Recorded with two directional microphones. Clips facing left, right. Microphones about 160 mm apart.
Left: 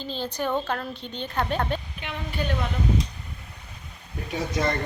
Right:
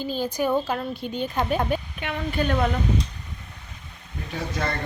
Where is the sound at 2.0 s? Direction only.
55° right (ahead or behind).